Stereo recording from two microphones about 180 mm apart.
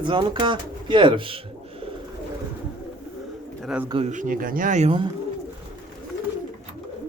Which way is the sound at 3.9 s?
30° right (ahead or behind).